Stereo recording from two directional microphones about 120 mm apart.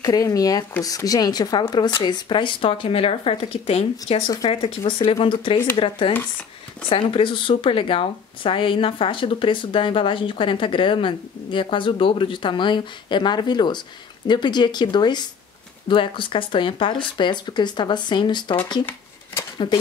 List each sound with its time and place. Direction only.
0.0 s speech: 30° left (ahead or behind); by 4.2 s 60° left (ahead or behind)
4.5 s speech: 45° left (ahead or behind)
19.6 s speech: 50° left (ahead or behind)